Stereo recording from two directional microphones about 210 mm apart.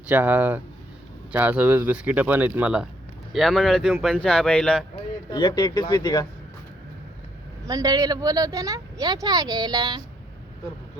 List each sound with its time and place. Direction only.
0.1 s speech: 10° right (ahead or behind)
5.3 s speech: 20° left (ahead or behind)
7.6 s speech: 15° right (ahead or behind)